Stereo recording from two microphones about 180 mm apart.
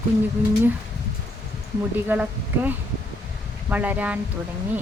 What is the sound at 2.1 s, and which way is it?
Speech, 10° right (ahead or behind).